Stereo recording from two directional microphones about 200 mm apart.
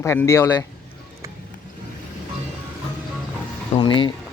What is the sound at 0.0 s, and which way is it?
Speech, 15° left (ahead or behind).